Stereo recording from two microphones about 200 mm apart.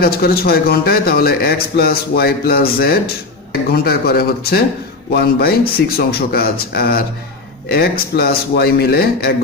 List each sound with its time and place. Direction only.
0.0 s a man's voice: 50° left (ahead or behind)